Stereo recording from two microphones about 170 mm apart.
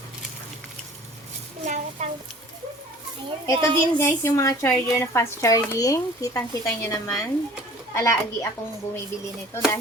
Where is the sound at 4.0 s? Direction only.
15° left (ahead or behind).